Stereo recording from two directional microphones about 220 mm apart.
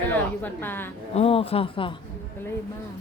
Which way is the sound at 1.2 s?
25° left (ahead or behind).